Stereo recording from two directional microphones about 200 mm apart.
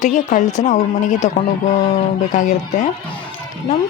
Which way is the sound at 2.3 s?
35° left (ahead or behind).